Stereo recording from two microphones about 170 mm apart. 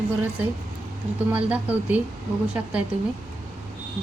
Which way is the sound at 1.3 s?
10° right (ahead or behind).